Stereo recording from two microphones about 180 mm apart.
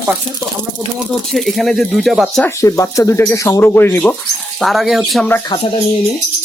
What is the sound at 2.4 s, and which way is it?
Speech, 15° left (ahead or behind).